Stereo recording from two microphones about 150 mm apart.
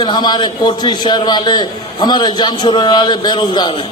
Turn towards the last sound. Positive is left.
turn(degrees=30)  # may be behind; listen again after turning